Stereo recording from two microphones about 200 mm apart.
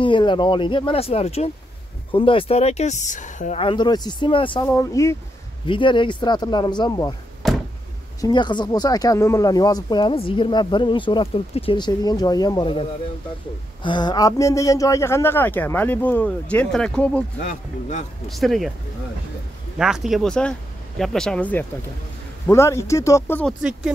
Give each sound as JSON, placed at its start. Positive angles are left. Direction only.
{"t": 0.0, "sound": "speech", "side_deg": 25}
{"t": 4.6, "sound": "speech", "side_deg": 15}
{"t": 5.7, "sound": "speech", "side_deg": 25}
{"t": 7.4, "sound": "a sound", "side_deg": 0}
{"t": 8.2, "sound": "speech", "side_deg": 20}
{"t": 13.8, "sound": "speech", "side_deg": 20}
{"t": 17.5, "sound": "speech", "side_deg": 35}
{"t": 18.3, "sound": "speech", "side_deg": 0}
{"t": 19.8, "sound": "speech", "side_deg": 0}
{"t": 23.6, "sound": "speech", "side_deg": -5}